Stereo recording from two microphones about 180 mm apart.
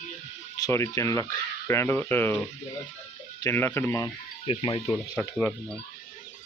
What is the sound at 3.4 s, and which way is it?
Speech, 15° left (ahead or behind).